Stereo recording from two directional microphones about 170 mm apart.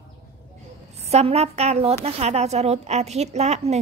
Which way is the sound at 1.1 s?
40° right (ahead or behind).